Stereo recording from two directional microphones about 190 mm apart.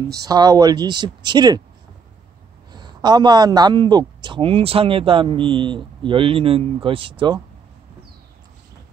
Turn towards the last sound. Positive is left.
turn(degrees=-25)  # may be behind; listen again after turning